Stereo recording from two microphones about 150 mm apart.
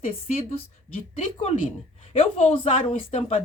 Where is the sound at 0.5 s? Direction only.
40° left (ahead or behind).